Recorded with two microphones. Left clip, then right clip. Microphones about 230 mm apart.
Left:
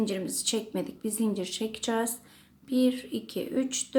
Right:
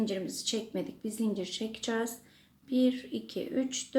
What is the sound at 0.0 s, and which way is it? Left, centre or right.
Speech, centre.